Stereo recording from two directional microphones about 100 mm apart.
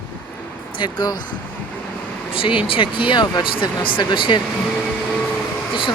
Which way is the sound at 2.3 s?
60° left (ahead or behind).